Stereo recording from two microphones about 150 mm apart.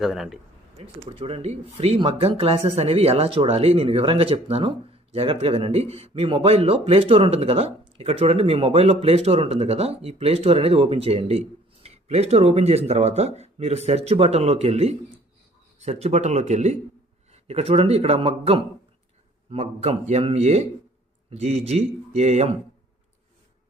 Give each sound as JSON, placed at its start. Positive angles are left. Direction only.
{"t": 0.0, "sound": "speech", "side_deg": 0}
{"t": 0.8, "sound": "speech", "side_deg": -40}